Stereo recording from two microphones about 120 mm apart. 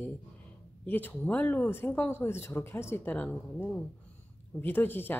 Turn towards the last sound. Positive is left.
turn(degrees=15)  # may be behind; listen again after turning